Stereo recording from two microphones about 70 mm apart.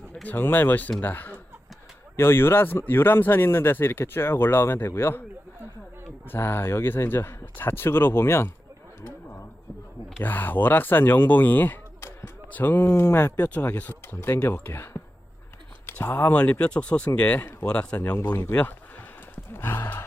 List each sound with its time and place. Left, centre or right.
0.2 s speech: left
6.3 s speech: left
10.2 s speech: left
11.9 s basketball bounce: left
12.5 s speech: left
12.8 s speech: left
13.4 s speech: left
16.3 s speech: centre
18.0 s speech: left
19.5 s speech: left